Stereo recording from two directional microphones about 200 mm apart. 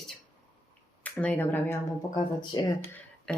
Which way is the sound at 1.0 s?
10° left (ahead or behind).